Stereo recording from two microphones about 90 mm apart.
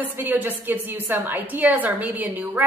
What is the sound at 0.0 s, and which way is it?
A woman's voice, 20° right (ahead or behind).